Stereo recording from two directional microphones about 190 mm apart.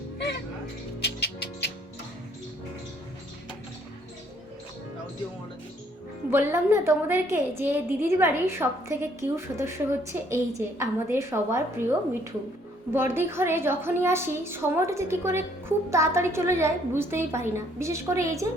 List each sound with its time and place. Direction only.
1.0 s music: 55° left (ahead or behind)
6.3 s a woman's voice: 10° right (ahead or behind)